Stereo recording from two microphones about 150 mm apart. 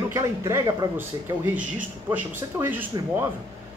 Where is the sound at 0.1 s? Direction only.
20° right (ahead or behind).